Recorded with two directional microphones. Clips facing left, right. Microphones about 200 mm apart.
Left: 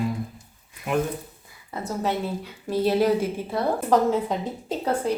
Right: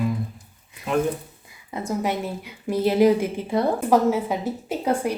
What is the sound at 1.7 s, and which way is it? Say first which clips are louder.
A woman's voice: right 2 dB; 15° right (ahead or behind).